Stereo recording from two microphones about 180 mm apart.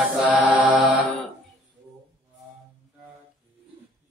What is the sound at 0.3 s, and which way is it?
Mantra, 5° right (ahead or behind).